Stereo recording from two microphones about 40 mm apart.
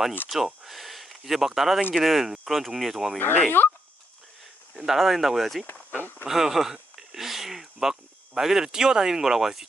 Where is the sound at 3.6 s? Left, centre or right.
Left.